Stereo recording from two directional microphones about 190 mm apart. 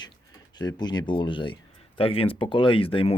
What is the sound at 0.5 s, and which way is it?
Speech, 20° left (ahead or behind).